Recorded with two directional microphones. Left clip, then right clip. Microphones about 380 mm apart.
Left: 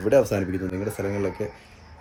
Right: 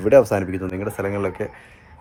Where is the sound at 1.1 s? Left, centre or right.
Centre.